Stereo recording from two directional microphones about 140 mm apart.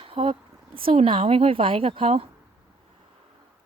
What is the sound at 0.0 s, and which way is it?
Speech, 40° right (ahead or behind).